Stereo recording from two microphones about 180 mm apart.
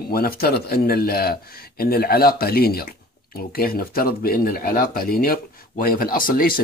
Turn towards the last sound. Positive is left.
turn(degrees=55)  # may be behind; listen again after turning